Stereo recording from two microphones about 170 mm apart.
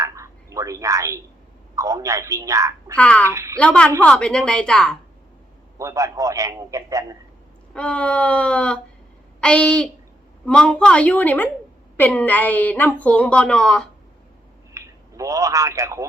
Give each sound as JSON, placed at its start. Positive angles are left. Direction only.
{"t": 0.0, "sound": "a sound", "side_deg": -20}
{"t": 1.7, "sound": "a woman's voice", "side_deg": -20}
{"t": 2.9, "sound": "a woman's voice", "side_deg": 10}
{"t": 3.2, "sound": "a woman's voice", "side_deg": -20}
{"t": 3.6, "sound": "a woman's voice", "side_deg": 5}
{"t": 5.7, "sound": "a man's voice", "side_deg": -20}
{"t": 7.7, "sound": "a woman's voice", "side_deg": 5}
{"t": 14.7, "sound": "a man's voice", "side_deg": -20}